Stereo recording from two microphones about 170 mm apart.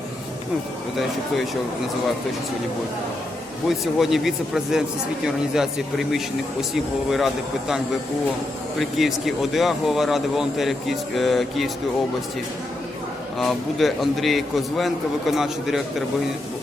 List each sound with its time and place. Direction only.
3.7 s speech: centre (ahead or behind)
8.8 s speech: centre (ahead or behind)
13.4 s speech: centre (ahead or behind)